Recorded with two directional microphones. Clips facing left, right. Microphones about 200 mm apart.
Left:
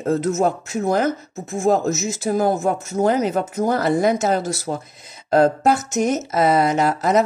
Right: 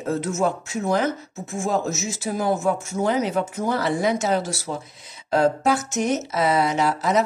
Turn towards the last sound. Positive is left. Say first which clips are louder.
# left 3 dB
turn(degrees=50)  # may be behind; listen again after turning